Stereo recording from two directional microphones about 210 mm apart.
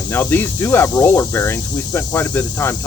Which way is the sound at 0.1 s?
10° left (ahead or behind).